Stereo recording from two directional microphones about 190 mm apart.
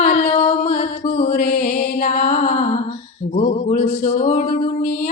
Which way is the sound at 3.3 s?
35° left (ahead or behind).